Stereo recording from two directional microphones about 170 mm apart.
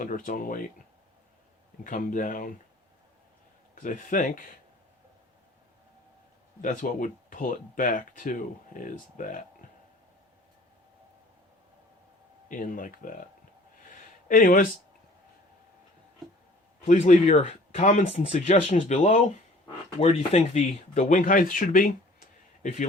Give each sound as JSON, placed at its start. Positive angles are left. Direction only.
{"t": 0.0, "sound": "speech", "side_deg": 55}
{"t": 1.8, "sound": "speech", "side_deg": 50}
{"t": 3.8, "sound": "speech", "side_deg": 50}
{"t": 6.6, "sound": "speech", "side_deg": 50}
{"t": 12.5, "sound": "speech", "side_deg": 55}
{"t": 14.3, "sound": "speech", "side_deg": 55}
{"t": 16.8, "sound": "a man's voice", "side_deg": 45}